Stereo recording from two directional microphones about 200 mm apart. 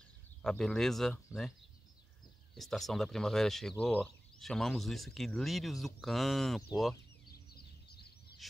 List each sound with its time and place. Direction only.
0.4 s speech: 5° left (ahead or behind)
2.5 s speech: centre (ahead or behind)
7.2 s a sound: 50° left (ahead or behind)